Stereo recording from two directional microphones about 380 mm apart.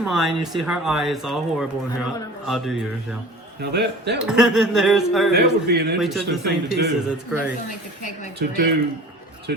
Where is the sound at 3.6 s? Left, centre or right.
Right.